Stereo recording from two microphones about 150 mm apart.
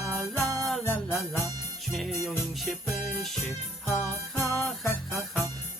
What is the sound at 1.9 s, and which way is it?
Music, centre (ahead or behind).